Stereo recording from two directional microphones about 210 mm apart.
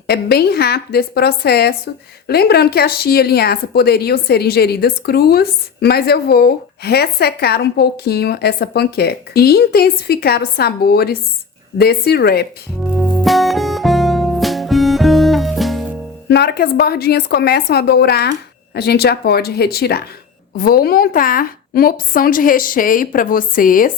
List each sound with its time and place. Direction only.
0.1 s speech: 50° left (ahead or behind)
12.9 s music: 5° right (ahead or behind)
16.3 s a woman's voice: 50° left (ahead or behind)